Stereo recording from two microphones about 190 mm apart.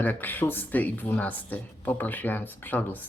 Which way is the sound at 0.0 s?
10° left (ahead or behind).